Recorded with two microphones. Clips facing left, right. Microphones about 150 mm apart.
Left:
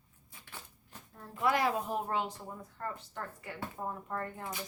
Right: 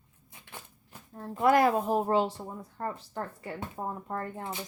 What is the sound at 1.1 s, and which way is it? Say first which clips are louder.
Speech: right 7 dB; 40° right (ahead or behind).